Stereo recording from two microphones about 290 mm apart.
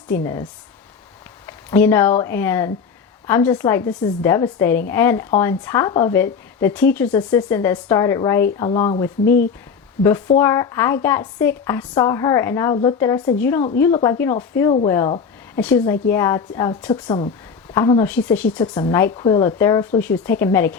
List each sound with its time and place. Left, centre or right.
0.1 s speech: centre
1.5 s speech: centre
9.2 s speech: left
10.0 s speech: centre